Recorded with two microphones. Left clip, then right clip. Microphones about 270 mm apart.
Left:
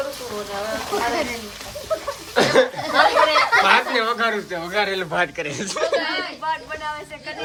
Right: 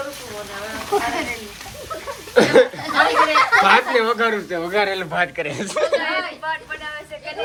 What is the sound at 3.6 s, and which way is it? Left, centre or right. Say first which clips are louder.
Speech: right 2 dB; centre.